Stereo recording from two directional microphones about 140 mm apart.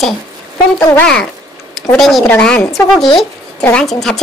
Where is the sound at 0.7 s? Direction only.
15° left (ahead or behind).